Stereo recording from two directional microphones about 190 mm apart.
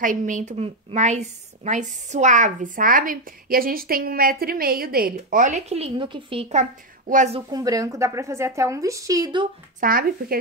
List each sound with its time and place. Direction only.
0.0 s a woman's voice: 45° right (ahead or behind)
5.1 s speech: 40° right (ahead or behind); by 6.4 s 25° right (ahead or behind)
6.5 s a woman's voice: 40° right (ahead or behind)
7.3 s speech: 20° right (ahead or behind)
9.8 s a woman's voice: 50° right (ahead or behind)